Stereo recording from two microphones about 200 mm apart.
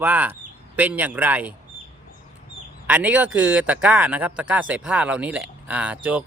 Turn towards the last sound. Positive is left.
turn(degrees=-5)  # may be behind; listen again after turning